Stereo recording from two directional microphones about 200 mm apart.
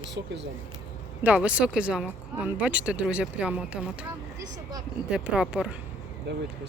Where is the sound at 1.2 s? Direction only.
10° right (ahead or behind).